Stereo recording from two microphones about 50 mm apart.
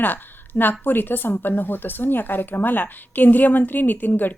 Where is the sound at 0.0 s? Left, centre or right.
Left.